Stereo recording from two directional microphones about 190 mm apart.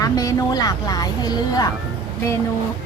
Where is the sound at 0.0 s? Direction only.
20° left (ahead or behind).